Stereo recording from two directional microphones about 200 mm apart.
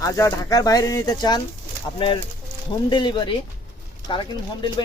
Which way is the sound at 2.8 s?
20° left (ahead or behind).